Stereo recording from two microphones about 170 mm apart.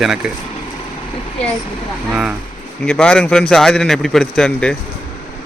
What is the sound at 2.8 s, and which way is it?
Speech, 5° left (ahead or behind).